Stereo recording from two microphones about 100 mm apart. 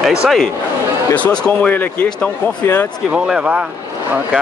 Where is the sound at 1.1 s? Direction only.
15° left (ahead or behind).